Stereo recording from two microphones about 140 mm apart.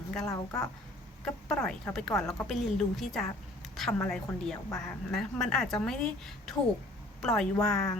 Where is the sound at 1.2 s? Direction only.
5° left (ahead or behind).